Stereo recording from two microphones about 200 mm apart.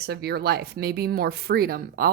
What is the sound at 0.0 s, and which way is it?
Speech, 55° right (ahead or behind).